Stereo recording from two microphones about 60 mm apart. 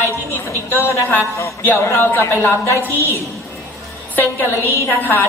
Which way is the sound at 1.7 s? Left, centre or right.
Left.